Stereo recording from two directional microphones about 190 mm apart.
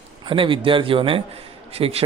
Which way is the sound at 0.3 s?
25° right (ahead or behind).